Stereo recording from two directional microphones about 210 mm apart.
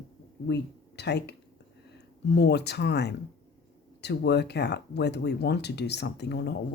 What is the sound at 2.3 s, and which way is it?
Speech, 55° left (ahead or behind).